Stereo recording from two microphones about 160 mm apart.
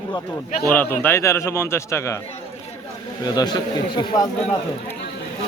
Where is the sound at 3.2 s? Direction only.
25° left (ahead or behind).